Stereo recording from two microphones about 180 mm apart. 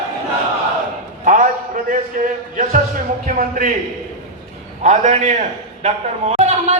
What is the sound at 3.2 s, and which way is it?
Speech, 50° right (ahead or behind).